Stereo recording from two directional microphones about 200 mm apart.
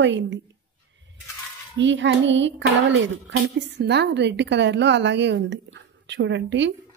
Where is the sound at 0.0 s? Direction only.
65° right (ahead or behind).